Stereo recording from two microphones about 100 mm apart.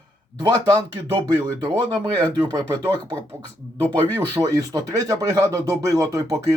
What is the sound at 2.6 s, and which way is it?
Speech, 15° left (ahead or behind).